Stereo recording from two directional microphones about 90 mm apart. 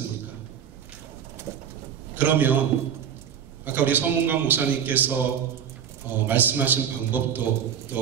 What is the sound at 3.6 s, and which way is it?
A man's voice, 20° right (ahead or behind).